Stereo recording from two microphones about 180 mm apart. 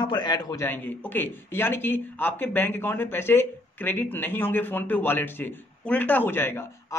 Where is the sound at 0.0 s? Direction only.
25° left (ahead or behind).